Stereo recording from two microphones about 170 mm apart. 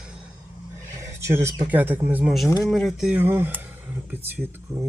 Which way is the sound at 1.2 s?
15° right (ahead or behind).